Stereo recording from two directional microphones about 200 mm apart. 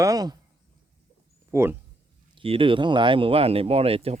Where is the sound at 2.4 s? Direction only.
25° right (ahead or behind).